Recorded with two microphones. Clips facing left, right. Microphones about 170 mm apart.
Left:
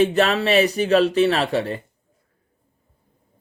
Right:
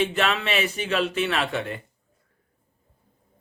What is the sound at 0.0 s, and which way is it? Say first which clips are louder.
Speech: left 6 dB; 40° left (ahead or behind).